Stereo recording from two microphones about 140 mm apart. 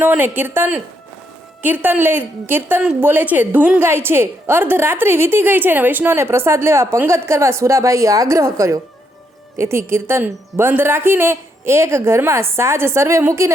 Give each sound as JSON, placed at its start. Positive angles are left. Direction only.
{"t": 0.0, "sound": "a woman's voice", "side_deg": -15}